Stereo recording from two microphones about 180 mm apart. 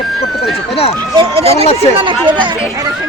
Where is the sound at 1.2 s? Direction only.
35° right (ahead or behind).